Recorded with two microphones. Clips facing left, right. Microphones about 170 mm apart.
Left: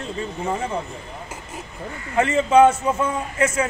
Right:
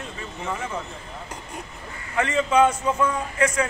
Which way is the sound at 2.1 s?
25° left (ahead or behind).